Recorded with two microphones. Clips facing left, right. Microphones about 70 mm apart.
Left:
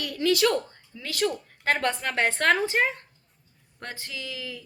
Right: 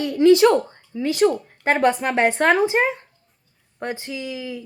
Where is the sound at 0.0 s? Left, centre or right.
Right.